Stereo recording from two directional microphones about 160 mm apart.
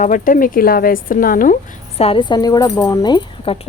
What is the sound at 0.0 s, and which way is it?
A woman's voice, 55° left (ahead or behind).